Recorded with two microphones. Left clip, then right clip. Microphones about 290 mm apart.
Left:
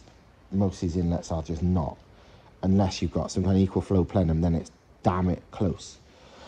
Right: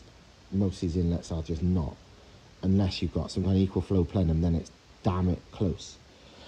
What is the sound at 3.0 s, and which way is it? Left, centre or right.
Speech, left.